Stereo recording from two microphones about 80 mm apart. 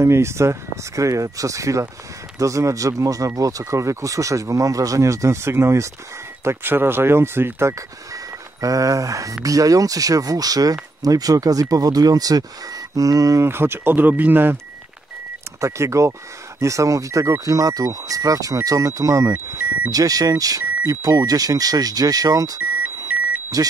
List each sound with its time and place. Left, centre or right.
0.0 s speech: right
8.5 s speech: right
13.5 s speech: right
15.6 s speech: right